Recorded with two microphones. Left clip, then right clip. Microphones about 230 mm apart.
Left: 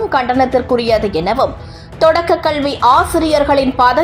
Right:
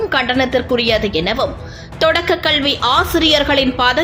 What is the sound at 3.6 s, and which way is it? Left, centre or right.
Speech, centre.